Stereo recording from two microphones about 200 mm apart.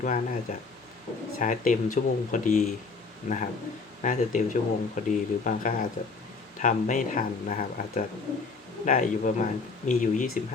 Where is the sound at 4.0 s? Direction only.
40° left (ahead or behind).